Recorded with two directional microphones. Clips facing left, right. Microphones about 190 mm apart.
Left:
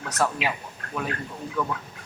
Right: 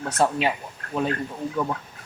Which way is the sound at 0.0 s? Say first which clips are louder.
Right 4 dB; 30° right (ahead or behind).